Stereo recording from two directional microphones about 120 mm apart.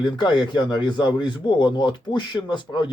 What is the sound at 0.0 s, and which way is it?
Speech, 40° left (ahead or behind).